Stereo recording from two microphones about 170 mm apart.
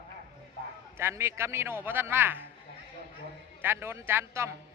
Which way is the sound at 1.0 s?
15° right (ahead or behind).